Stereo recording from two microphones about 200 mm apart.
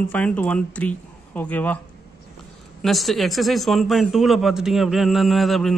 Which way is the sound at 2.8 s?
Centre (ahead or behind).